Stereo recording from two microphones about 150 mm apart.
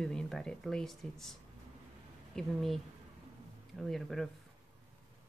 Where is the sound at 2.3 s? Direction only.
Centre (ahead or behind).